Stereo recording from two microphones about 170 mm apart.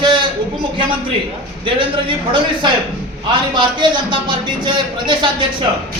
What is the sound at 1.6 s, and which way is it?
Speech, 30° right (ahead or behind).